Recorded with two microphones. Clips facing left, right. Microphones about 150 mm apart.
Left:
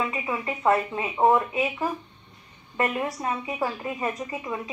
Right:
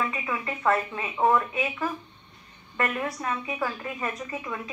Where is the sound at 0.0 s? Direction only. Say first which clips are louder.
Left 2 dB; 20° left (ahead or behind).